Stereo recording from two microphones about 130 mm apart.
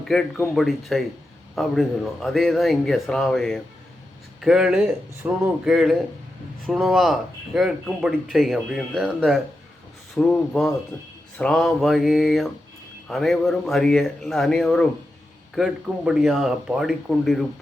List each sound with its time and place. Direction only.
0.0 s speech: 5° left (ahead or behind)
10.9 s speech: 20° left (ahead or behind)
11.3 s speech: 5° left (ahead or behind)